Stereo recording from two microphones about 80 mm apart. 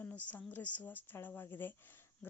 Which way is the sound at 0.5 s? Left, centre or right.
Left.